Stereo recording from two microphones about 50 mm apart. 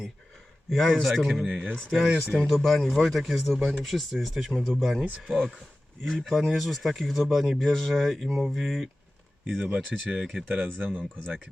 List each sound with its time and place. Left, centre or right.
0.7 s speech: centre
1.6 s speech: centre
1.9 s speech: centre
2.2 s speech: centre
5.2 s speech: centre
9.9 s speech: centre
10.2 s speech: centre
10.6 s speech: centre